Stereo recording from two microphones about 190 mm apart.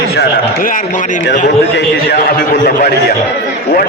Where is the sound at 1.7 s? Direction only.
60° left (ahead or behind).